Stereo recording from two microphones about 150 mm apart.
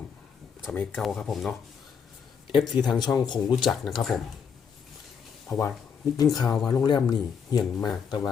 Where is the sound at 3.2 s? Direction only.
30° left (ahead or behind).